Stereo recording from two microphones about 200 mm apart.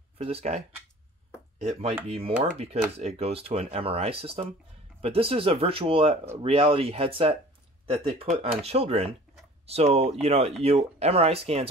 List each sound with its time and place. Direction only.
0.2 s speech: 30° right (ahead or behind)
2.0 s speech: 30° right (ahead or behind)